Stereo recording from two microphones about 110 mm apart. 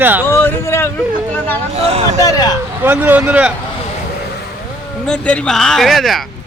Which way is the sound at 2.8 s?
15° right (ahead or behind).